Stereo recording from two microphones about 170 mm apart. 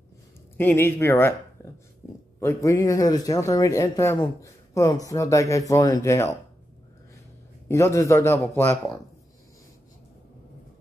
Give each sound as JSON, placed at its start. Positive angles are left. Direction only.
{"t": 0.6, "sound": "speech", "side_deg": 15}
{"t": 7.6, "sound": "speech", "side_deg": 15}